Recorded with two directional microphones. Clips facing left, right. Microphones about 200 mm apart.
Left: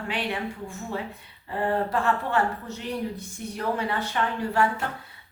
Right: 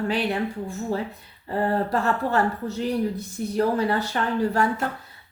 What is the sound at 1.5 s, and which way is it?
Speech, 40° right (ahead or behind).